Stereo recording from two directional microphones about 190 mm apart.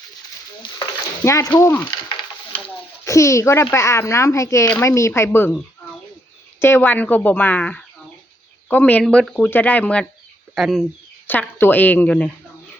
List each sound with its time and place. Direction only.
0.6 s speech: 20° left (ahead or behind)
3.0 s speech: 15° left (ahead or behind)
6.6 s speech: 10° left (ahead or behind)
11.3 s speech: 10° left (ahead or behind)